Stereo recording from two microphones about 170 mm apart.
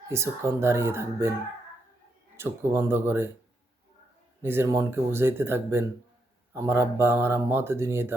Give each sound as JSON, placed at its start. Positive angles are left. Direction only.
{"t": 0.1, "sound": "speech", "side_deg": -15}
{"t": 2.3, "sound": "speech", "side_deg": -15}
{"t": 4.4, "sound": "speech", "side_deg": -15}